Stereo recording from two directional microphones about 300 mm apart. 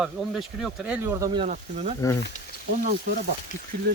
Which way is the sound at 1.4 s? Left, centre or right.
Right.